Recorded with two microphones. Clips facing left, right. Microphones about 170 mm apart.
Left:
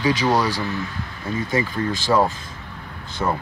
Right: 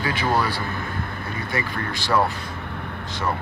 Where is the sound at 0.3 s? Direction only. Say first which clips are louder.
Left 3 dB; 40° left (ahead or behind).